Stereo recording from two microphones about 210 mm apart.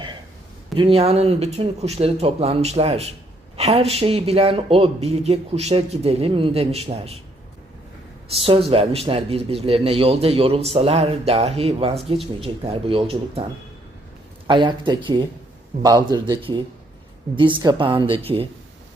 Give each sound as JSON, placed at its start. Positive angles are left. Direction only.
{"t": 0.8, "sound": "speech", "side_deg": -25}
{"t": 8.3, "sound": "speech", "side_deg": -25}
{"t": 14.4, "sound": "speech", "side_deg": -20}